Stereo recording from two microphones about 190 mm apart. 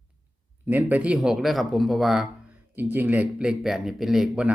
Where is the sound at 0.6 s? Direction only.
10° right (ahead or behind).